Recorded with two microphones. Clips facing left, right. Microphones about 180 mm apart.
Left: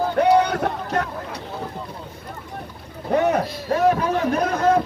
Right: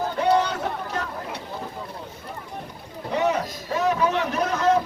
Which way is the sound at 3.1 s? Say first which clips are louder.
Left 4 dB; 55° left (ahead or behind).